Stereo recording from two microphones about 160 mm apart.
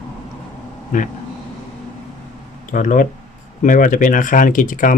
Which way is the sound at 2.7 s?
55° left (ahead or behind).